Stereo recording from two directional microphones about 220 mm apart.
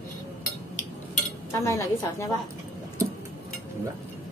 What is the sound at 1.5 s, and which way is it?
Speech, 15° left (ahead or behind).